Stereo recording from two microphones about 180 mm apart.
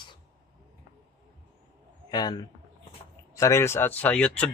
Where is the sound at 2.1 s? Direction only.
25° left (ahead or behind); by 4.5 s 5° left (ahead or behind).